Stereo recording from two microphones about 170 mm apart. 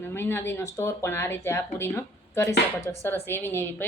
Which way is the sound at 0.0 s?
15° left (ahead or behind).